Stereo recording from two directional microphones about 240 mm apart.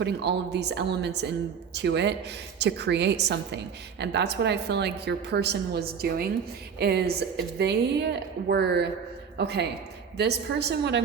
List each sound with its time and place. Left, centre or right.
0.0 s a woman's voice: right